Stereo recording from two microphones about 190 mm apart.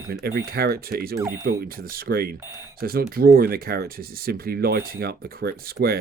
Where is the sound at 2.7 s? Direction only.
50° right (ahead or behind).